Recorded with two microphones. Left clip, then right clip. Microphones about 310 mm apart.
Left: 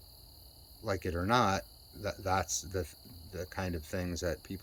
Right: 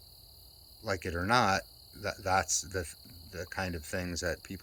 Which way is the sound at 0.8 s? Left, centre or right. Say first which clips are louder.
Right 1 dB; centre.